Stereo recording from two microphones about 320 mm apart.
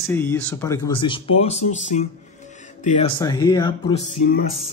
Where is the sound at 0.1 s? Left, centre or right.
Centre.